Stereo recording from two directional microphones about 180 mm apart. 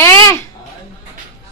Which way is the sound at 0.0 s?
15° left (ahead or behind).